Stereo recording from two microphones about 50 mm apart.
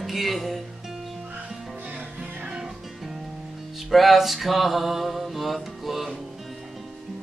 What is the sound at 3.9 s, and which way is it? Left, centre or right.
Mantra, centre.